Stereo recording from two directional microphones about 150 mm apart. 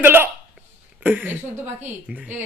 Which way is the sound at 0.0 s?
15° right (ahead or behind).